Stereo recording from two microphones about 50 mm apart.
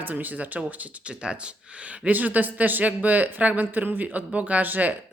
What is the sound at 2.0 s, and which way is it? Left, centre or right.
Speech, right.